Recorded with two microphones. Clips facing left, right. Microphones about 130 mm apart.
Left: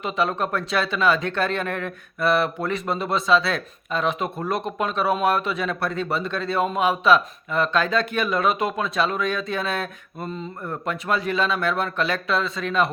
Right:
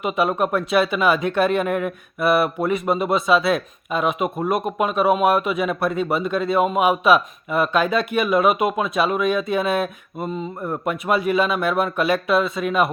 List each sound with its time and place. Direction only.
0.0 s speech: 15° right (ahead or behind)
4.4 s speech: 20° right (ahead or behind)
4.6 s speech: 10° right (ahead or behind)